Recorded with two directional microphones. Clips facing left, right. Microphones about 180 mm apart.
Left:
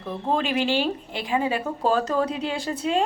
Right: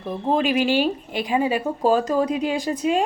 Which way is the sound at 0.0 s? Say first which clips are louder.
Right 4 dB; 15° right (ahead or behind).